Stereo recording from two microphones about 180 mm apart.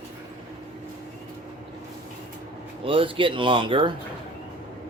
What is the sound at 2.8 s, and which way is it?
Speech, 30° right (ahead or behind).